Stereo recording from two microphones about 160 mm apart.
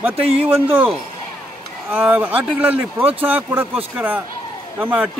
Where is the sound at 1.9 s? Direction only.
10° right (ahead or behind).